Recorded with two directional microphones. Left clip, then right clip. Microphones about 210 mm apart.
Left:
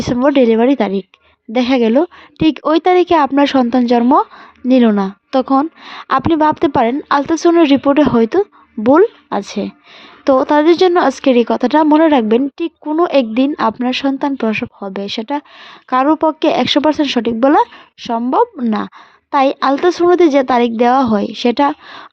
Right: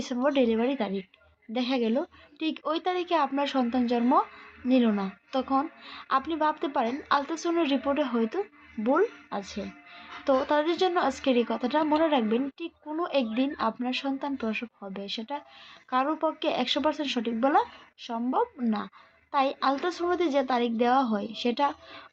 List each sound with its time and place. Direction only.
0.0 s a woman's voice: 45° left (ahead or behind)